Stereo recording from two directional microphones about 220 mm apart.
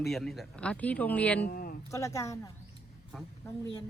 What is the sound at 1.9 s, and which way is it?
Speech, 15° left (ahead or behind).